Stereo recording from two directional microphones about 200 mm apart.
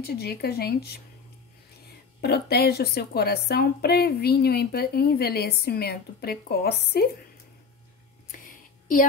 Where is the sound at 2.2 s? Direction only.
50° left (ahead or behind).